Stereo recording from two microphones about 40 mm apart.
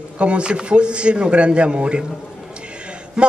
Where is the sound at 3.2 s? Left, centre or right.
Centre.